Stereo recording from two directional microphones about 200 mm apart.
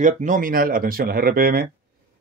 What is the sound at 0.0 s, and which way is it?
Speech, 40° right (ahead or behind).